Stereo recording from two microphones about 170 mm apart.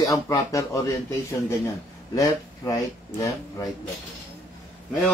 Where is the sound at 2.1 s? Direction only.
20° left (ahead or behind).